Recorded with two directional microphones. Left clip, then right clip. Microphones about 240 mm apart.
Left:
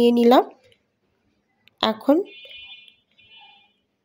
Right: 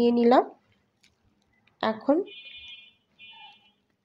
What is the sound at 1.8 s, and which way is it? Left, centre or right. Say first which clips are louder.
Speech: left 5 dB; left.